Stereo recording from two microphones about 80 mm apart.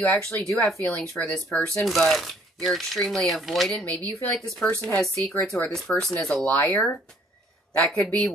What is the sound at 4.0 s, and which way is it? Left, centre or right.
Speech, centre.